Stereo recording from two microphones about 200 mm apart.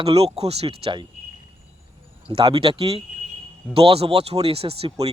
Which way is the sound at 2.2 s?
25° right (ahead or behind).